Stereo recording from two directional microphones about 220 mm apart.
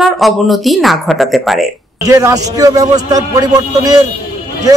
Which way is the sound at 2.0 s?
15° right (ahead or behind).